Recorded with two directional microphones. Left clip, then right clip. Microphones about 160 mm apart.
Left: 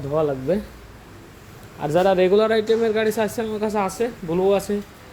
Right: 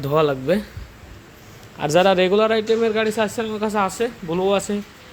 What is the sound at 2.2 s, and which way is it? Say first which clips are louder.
A man's voice: even; 10° left (ahead or behind).